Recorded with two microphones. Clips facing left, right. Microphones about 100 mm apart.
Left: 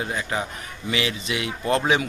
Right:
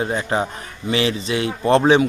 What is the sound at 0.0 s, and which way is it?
Speech, 30° right (ahead or behind).